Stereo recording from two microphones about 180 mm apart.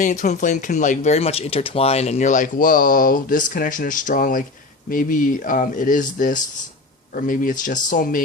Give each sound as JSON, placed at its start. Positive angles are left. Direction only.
{"t": 0.0, "sound": "speech", "side_deg": 45}